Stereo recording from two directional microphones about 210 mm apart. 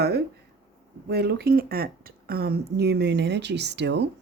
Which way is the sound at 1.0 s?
55° right (ahead or behind).